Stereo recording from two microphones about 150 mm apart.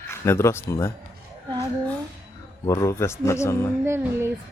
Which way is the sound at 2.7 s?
20° left (ahead or behind).